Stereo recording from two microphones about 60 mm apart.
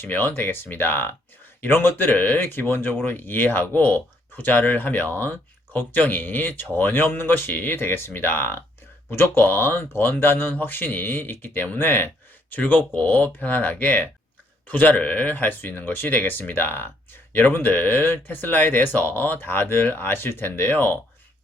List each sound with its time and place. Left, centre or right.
0.0 s speech: left